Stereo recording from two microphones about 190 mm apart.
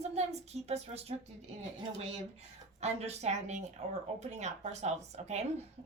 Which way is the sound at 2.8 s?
35° right (ahead or behind).